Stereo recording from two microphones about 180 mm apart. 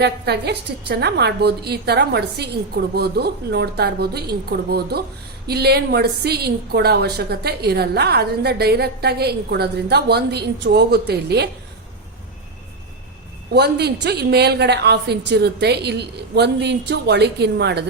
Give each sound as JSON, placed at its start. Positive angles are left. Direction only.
{"t": 0.0, "sound": "a woman's voice", "side_deg": -65}
{"t": 13.5, "sound": "a woman's voice", "side_deg": -65}